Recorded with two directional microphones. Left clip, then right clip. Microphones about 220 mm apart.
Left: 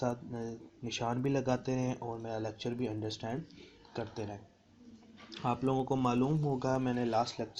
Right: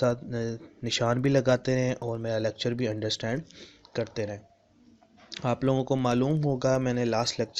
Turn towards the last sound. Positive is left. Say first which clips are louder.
# right 5 dB
turn(degrees=-40)  # may be behind; listen again after turning